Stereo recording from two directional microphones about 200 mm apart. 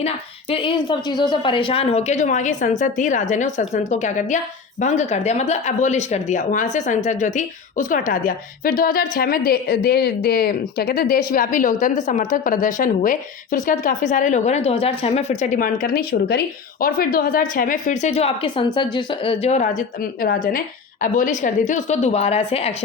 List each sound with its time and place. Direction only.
0.5 s speech: 25° left (ahead or behind)